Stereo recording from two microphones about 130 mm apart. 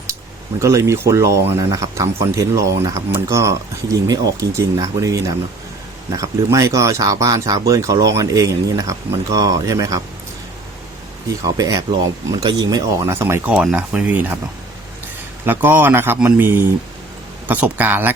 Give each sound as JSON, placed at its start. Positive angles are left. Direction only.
{"t": 0.6, "sound": "speech", "side_deg": -25}
{"t": 11.4, "sound": "speech", "side_deg": -30}
{"t": 13.5, "sound": "speech", "side_deg": -5}
{"t": 15.4, "sound": "speech", "side_deg": -15}